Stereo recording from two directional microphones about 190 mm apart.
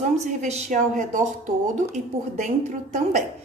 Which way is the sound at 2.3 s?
40° right (ahead or behind).